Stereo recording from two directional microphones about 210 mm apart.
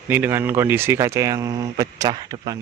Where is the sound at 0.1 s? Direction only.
10° right (ahead or behind).